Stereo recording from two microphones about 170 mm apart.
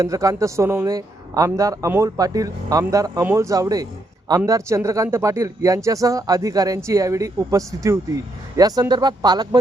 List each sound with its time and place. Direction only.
0.0 s speech: 20° right (ahead or behind)